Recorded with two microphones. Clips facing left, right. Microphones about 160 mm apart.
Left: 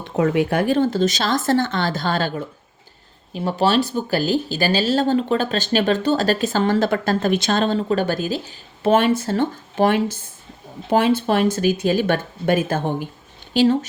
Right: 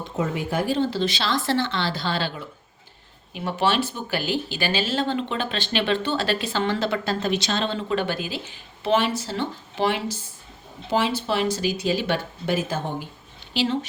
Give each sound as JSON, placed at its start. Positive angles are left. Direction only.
{"t": 0.0, "sound": "speech", "side_deg": 65}